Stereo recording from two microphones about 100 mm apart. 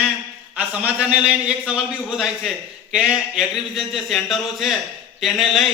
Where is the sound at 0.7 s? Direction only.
15° right (ahead or behind).